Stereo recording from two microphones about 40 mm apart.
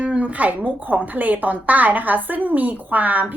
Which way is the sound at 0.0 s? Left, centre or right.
Right.